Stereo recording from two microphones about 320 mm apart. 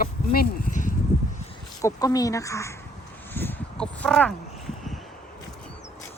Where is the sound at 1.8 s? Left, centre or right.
Centre.